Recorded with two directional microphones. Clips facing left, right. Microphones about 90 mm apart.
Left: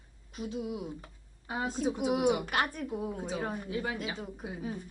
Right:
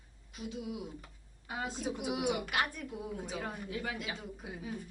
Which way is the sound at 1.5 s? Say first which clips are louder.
Left 5 dB; 35° left (ahead or behind).